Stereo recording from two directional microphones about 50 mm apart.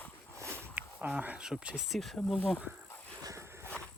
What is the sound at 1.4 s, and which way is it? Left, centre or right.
Speech, centre.